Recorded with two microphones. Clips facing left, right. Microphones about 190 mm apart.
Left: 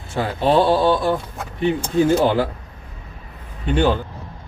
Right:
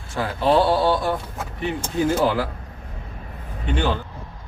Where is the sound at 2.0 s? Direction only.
25° left (ahead or behind).